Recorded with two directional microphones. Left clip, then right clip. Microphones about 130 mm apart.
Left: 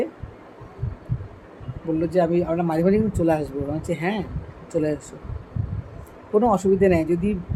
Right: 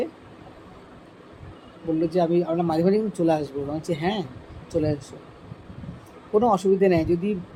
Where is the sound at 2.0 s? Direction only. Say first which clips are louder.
Left 2 dB; 15° right (ahead or behind).